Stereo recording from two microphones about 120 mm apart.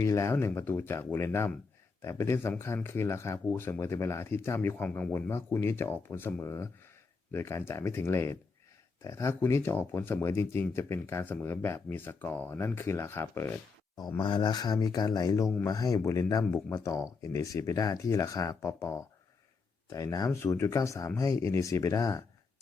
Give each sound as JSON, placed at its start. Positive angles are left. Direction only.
{"t": 0.0, "sound": "speech", "side_deg": 25}
{"t": 14.2, "sound": "speech", "side_deg": 40}